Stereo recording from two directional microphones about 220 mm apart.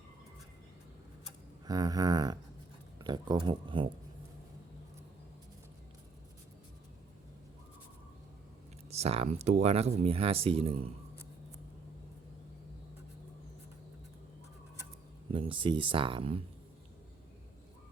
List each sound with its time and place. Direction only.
1.6 s a sound: 15° right (ahead or behind)
3.0 s speech: 20° right (ahead or behind)
8.9 s speech: 30° right (ahead or behind)
15.3 s speech: 25° right (ahead or behind)